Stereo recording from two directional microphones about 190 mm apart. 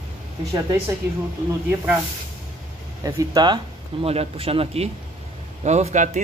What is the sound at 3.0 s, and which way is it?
Speech, 20° right (ahead or behind).